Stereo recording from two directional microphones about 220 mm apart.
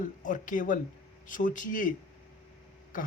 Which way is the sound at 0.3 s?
35° left (ahead or behind).